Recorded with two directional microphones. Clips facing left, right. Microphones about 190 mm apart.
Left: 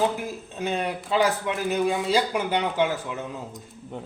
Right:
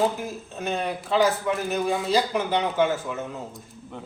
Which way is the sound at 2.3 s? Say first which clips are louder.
Right 1 dB; 10° left (ahead or behind).